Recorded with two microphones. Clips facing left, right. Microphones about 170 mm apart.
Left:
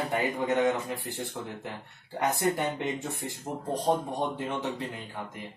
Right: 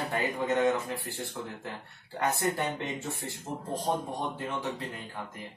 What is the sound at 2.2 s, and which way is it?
Speech, 20° left (ahead or behind).